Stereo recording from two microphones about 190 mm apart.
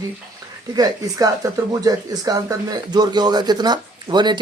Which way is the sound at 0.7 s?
20° right (ahead or behind).